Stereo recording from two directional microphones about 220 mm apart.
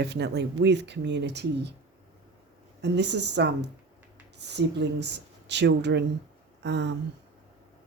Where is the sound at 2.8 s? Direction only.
50° right (ahead or behind).